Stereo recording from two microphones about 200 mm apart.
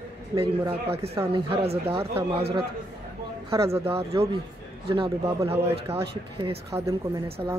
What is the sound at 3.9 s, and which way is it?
Speech, 30° right (ahead or behind).